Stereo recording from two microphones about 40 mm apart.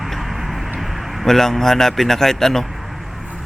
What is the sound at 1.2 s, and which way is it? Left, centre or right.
Speech, centre.